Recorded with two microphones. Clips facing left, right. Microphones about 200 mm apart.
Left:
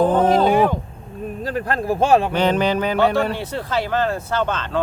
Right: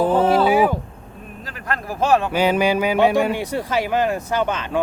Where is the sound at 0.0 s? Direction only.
10° right (ahead or behind).